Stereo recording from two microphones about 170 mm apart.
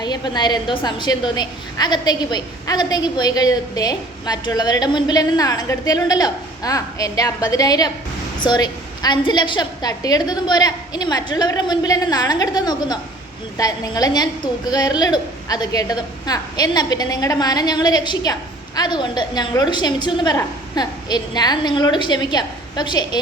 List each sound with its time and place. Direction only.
0.0 s a woman's voice: 25° left (ahead or behind)